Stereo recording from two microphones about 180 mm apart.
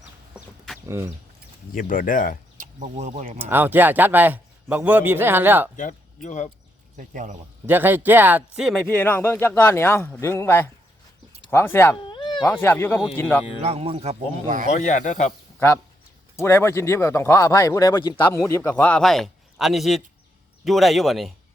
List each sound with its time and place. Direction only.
0.3 s chicken: centre (ahead or behind)
0.9 s a man's voice: 15° right (ahead or behind)
1.7 s speech: 50° left (ahead or behind)
2.6 s speech: 40° right (ahead or behind)
3.3 s a man's voice: 10° right (ahead or behind)
5.7 s speech: 45° left (ahead or behind)
6.9 s speech: 45° right (ahead or behind)
7.7 s a man's voice: 10° right (ahead or behind)
8.9 s speech: 10° left (ahead or behind)
12.0 s cat: 25° left (ahead or behind)
12.6 s speech: 10° left (ahead or behind)
13.6 s speech: 35° right (ahead or behind)
14.7 s speech: 40° left (ahead or behind)
15.5 s speech: 15° left (ahead or behind)